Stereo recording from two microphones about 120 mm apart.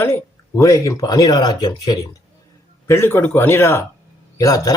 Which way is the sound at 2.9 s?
20° left (ahead or behind).